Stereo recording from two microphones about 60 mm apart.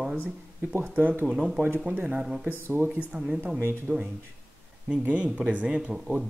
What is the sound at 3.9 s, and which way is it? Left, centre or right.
Speech, right.